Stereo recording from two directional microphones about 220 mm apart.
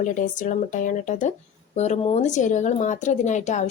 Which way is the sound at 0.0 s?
35° left (ahead or behind).